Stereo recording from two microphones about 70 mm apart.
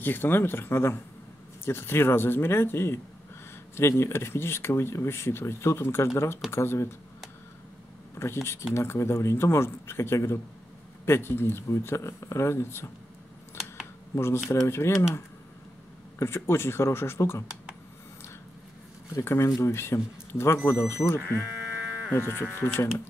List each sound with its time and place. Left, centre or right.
0.0 s speech: left
4.0 s speech: left
8.1 s speech: left
14.1 s speech: left
16.2 s speech: left
19.2 s speech: left
21.4 s sheep: centre
22.1 s speech: left